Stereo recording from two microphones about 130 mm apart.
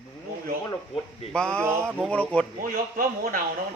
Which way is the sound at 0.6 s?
40° left (ahead or behind).